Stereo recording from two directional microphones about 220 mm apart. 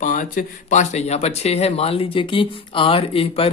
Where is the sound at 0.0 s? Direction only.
35° left (ahead or behind).